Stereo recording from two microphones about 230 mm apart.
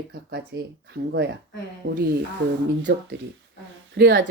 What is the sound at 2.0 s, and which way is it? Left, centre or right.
Speech, right.